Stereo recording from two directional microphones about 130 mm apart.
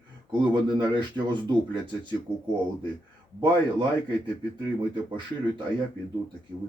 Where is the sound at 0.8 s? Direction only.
35° right (ahead or behind).